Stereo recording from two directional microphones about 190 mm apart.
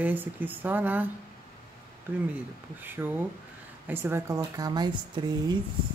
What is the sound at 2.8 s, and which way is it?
Speech, 10° right (ahead or behind).